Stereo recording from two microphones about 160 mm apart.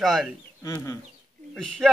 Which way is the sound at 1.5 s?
Centre (ahead or behind).